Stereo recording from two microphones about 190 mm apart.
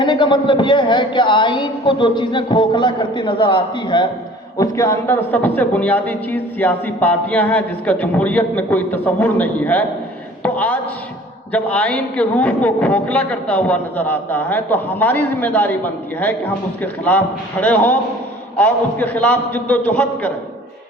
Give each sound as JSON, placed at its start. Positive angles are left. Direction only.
{"t": 0.0, "sound": "a man's voice", "side_deg": 25}
{"t": 10.4, "sound": "a sound", "side_deg": 10}
{"t": 11.5, "sound": "a man's voice", "side_deg": 5}